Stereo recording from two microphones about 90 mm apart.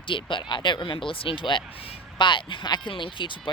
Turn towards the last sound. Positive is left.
turn(degrees=65)  # may be behind; listen again after turning